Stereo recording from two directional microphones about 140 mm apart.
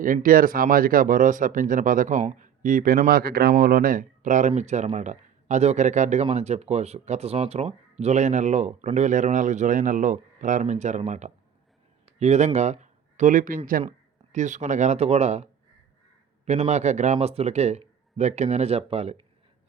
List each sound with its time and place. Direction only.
0.0 s speech: 75° right (ahead or behind); by 11.3 s 55° right (ahead or behind)
12.0 s a sound: 50° right (ahead or behind)
12.5 s speech: 55° right (ahead or behind); by 13.6 s 75° right (ahead or behind)
14.3 s speech: 60° right (ahead or behind)
16.5 s speech: 55° right (ahead or behind)